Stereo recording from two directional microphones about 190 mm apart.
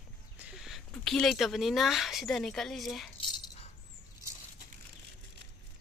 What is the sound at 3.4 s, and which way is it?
Coin, 30° left (ahead or behind).